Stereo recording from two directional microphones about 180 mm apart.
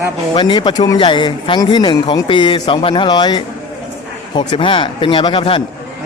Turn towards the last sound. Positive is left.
turn(degrees=30)  # may be behind; listen again after turning